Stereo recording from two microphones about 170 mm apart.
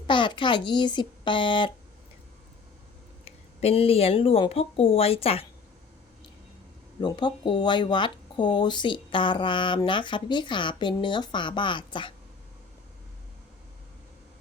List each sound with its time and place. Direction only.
0.1 s speech: 30° left (ahead or behind)
3.2 s speech: 35° left (ahead or behind)
7.0 s speech: 25° left (ahead or behind)